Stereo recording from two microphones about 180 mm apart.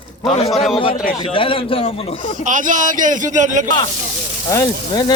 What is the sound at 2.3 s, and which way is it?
A man's voice, 45° right (ahead or behind).